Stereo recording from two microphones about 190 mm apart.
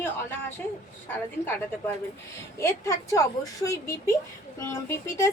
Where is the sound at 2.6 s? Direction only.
15° left (ahead or behind).